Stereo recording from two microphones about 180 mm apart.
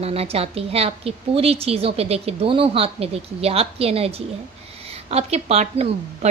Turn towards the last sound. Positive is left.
turn(degrees=-35)  # may be behind; listen again after turning